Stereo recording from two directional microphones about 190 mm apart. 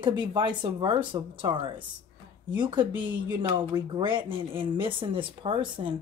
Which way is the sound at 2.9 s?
10° right (ahead or behind).